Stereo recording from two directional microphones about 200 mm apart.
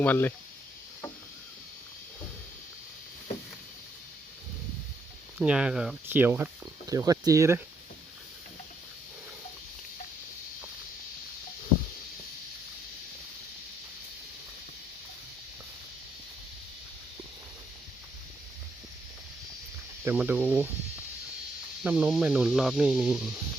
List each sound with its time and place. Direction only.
0.0 s speech: 10° left (ahead or behind)
5.4 s speech: 5° right (ahead or behind)
20.1 s speech: 10° right (ahead or behind)
21.8 s speech: 5° right (ahead or behind)